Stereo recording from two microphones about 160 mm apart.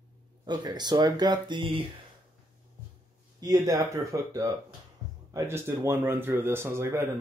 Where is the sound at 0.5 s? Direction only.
25° right (ahead or behind).